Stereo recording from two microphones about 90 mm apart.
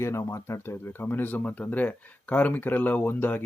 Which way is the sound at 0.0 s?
30° left (ahead or behind).